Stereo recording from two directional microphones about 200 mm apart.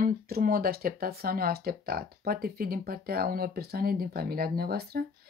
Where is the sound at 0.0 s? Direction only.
45° right (ahead or behind).